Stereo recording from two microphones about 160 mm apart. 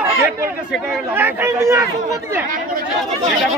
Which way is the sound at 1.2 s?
15° right (ahead or behind).